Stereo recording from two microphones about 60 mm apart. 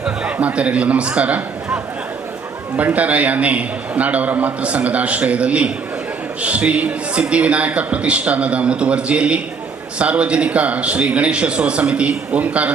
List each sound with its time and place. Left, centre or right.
0.0 s a man's voice: centre